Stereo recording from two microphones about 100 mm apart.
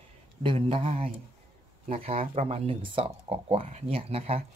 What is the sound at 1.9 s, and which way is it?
Speech, 80° right.